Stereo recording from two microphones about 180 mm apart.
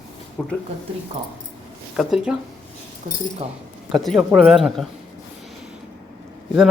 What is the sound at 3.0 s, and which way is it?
Speech, 45° right (ahead or behind).